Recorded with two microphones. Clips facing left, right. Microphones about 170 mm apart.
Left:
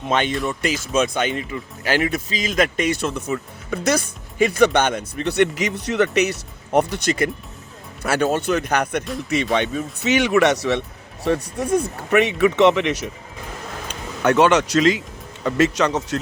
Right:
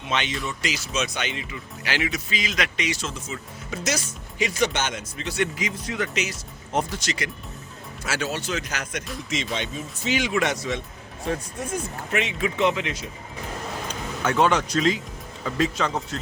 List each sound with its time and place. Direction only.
0.1 s speech: 50° left (ahead or behind); by 13.1 s 75° left (ahead or behind)
14.3 s speech: 75° left (ahead or behind)